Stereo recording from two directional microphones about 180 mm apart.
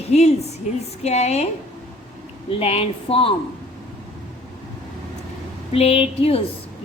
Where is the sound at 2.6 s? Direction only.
35° left (ahead or behind).